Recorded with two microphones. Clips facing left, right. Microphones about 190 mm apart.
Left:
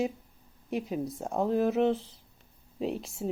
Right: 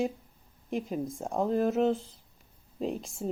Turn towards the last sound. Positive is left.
turn(degrees=0)  # may be behind; listen again after turning